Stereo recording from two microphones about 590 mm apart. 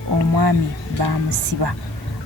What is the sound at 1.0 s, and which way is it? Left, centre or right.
Speech, right.